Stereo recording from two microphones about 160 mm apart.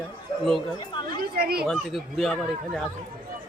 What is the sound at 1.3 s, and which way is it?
Speech, 70° right (ahead or behind).